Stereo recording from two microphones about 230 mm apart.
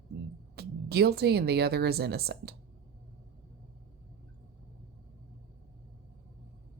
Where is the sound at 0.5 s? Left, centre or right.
Right.